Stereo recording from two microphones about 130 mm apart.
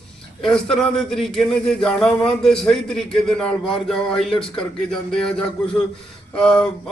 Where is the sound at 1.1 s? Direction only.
5° left (ahead or behind).